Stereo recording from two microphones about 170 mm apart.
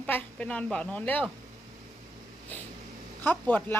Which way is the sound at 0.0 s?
10° left (ahead or behind).